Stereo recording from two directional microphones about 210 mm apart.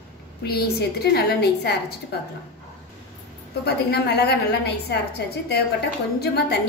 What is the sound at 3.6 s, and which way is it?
A woman's voice, 50° left (ahead or behind).